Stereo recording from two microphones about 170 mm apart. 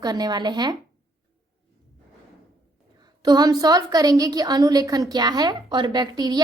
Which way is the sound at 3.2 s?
25° right (ahead or behind).